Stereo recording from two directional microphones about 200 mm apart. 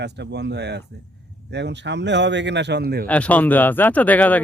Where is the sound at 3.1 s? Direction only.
5° left (ahead or behind).